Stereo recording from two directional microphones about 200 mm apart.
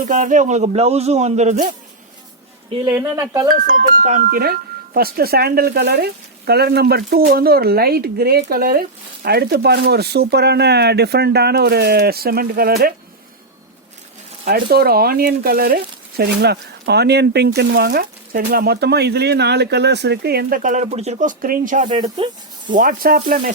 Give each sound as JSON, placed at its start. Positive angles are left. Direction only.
{"t": 0.0, "sound": "a man's voice", "side_deg": -40}
{"t": 2.8, "sound": "speech", "side_deg": -15}
{"t": 3.5, "sound": "speech", "side_deg": -45}
{"t": 14.4, "sound": "speech", "side_deg": -50}